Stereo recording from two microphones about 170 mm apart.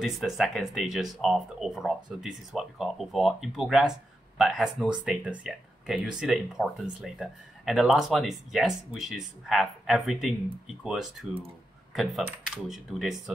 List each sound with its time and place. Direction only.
0.0 s speech: centre (ahead or behind)